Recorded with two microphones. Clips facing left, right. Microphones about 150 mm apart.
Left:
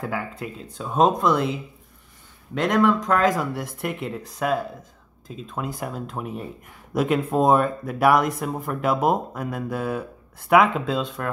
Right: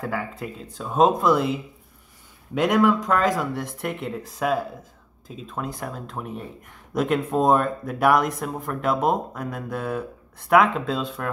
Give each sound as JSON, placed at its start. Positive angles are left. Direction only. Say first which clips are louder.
{"t": 0.0, "sound": "speech", "louder": "even", "side_deg": 0}